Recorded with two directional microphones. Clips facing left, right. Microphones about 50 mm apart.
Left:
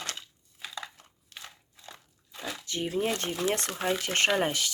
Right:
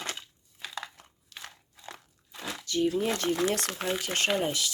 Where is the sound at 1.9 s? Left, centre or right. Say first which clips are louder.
Right 4 dB; right.